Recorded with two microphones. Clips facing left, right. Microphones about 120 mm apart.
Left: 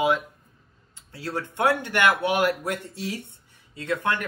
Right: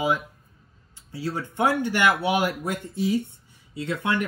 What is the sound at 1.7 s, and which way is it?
Speech, 60° left (ahead or behind).